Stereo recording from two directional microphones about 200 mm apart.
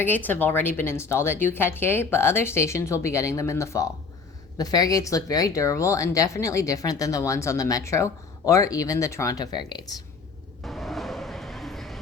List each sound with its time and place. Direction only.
0.0 s speech: 10° left (ahead or behind)
10.6 s vehicle: centre (ahead or behind)